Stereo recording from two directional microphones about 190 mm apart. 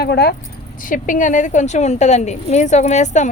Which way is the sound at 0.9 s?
40° left (ahead or behind).